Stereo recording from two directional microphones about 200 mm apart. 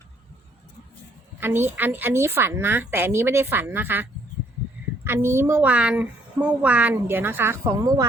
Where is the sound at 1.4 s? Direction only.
10° right (ahead or behind).